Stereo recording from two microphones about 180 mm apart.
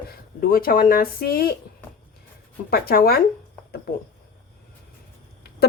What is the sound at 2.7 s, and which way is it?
Speech, 60° left (ahead or behind).